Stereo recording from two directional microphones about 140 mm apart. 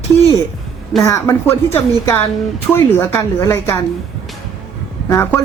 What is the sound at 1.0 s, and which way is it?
Speech, 20° left (ahead or behind).